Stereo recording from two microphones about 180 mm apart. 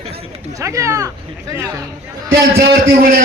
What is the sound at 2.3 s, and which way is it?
Speech, 65° right (ahead or behind).